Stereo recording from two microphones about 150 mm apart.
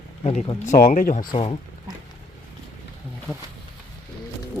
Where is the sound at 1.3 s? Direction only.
40° left (ahead or behind).